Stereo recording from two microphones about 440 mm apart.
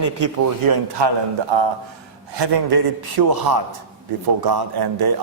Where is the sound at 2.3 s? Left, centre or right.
Right.